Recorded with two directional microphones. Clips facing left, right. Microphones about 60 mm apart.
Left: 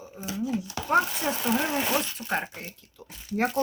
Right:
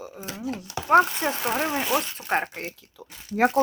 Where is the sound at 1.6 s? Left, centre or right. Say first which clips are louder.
Right 2 dB; right.